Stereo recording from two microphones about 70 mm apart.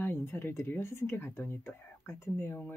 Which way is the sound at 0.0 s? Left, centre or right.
Left.